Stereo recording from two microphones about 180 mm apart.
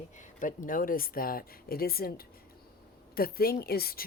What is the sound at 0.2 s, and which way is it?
Speech, 45° left (ahead or behind).